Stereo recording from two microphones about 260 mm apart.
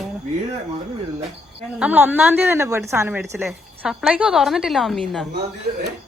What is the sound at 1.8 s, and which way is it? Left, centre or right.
A woman's voice, centre.